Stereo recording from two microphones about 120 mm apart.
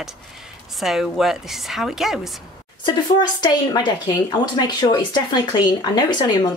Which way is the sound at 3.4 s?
35° left (ahead or behind).